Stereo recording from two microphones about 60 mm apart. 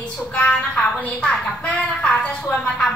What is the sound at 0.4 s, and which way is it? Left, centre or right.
Speech, left.